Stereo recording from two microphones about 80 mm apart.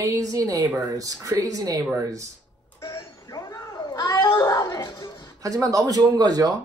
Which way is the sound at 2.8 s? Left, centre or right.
Left.